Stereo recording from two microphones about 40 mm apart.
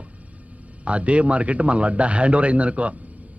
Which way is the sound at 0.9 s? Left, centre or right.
Right.